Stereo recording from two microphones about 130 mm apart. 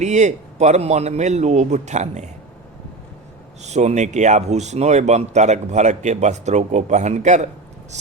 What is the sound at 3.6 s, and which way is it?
Speech, 60° right (ahead or behind).